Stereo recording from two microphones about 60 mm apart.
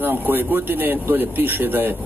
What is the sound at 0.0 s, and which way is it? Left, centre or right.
A man's voice, right.